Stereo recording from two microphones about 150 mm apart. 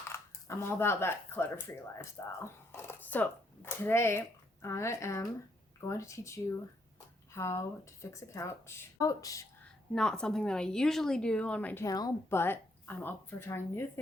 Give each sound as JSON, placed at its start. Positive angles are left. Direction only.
{"t": 0.1, "sound": "a woman's voice", "side_deg": 15}
{"t": 9.9, "sound": "a woman's voice", "side_deg": 5}